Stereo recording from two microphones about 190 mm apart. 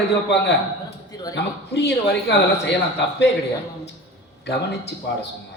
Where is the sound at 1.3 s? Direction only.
65° left (ahead or behind).